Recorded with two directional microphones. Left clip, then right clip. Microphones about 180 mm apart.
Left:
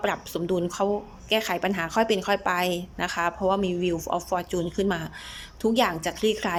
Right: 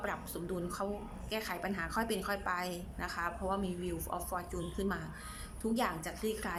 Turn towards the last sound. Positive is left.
turn(degrees=40)  # may be behind; listen again after turning